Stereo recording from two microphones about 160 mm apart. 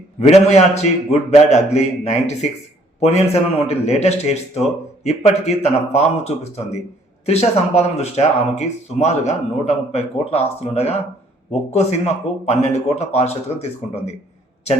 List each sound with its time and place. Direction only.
0.2 s a man's voice: 45° left (ahead or behind)